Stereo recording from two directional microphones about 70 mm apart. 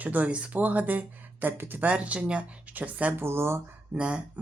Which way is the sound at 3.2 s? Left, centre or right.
Right.